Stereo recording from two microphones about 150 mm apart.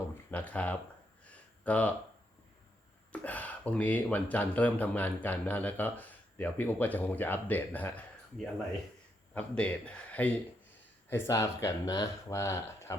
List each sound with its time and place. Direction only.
0.3 s speech: 10° left (ahead or behind)
1.2 s a sound: 10° left (ahead or behind)
3.1 s speech: 10° left (ahead or behind)